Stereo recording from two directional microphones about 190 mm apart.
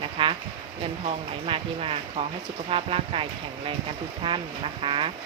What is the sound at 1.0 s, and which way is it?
Speech, 30° right (ahead or behind).